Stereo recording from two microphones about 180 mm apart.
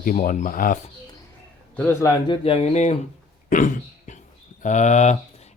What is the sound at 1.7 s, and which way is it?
Speech, 10° left (ahead or behind).